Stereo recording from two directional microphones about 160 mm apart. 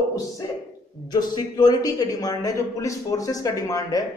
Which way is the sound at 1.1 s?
25° left (ahead or behind).